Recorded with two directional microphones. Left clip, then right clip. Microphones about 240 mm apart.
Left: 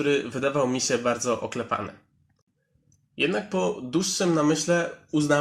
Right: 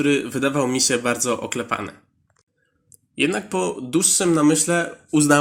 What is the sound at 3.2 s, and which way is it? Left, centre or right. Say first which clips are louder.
Speech: right 3 dB; right.